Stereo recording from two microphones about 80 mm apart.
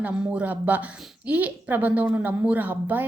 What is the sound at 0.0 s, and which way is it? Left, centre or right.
Speech, right.